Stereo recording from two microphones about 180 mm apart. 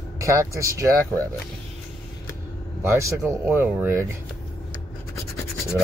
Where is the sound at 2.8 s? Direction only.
15° right (ahead or behind).